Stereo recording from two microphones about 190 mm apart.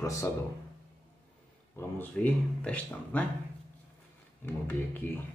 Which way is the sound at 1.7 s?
10° left (ahead or behind).